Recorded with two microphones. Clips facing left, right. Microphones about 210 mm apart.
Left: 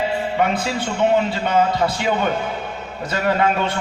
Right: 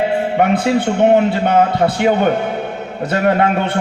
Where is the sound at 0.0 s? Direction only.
60° right (ahead or behind).